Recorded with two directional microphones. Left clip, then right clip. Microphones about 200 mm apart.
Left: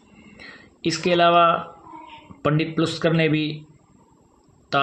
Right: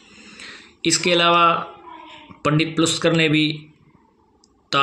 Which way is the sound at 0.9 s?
30° left (ahead or behind).